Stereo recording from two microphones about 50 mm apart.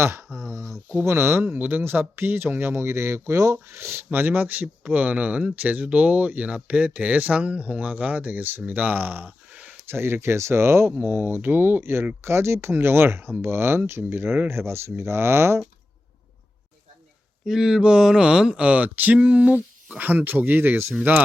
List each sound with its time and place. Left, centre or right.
0.0 s speech: right
0.3 s a sound: right
1.0 s speech: right
1.5 s speech: right
1.8 s speech: right
9.9 s speech: right
11.8 s speech: right
17.4 s a sound: centre; by 19.6 s right
20.0 s speech: right